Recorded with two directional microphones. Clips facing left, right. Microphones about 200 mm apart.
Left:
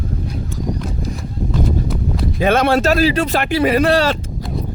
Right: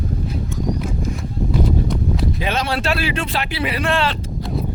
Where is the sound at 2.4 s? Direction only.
50° left (ahead or behind).